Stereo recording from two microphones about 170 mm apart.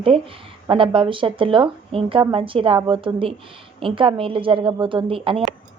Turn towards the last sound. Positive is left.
turn(degrees=-30)  # may be behind; listen again after turning